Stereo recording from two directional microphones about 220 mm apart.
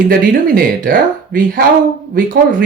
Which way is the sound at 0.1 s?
40° right (ahead or behind).